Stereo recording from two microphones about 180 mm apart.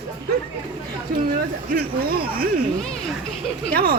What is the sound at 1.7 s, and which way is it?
Speech, 60° right (ahead or behind).